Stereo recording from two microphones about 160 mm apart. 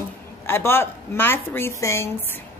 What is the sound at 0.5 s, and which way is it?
Speech, 15° left (ahead or behind).